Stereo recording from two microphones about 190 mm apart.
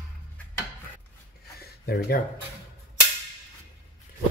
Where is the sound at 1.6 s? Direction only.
55° left (ahead or behind).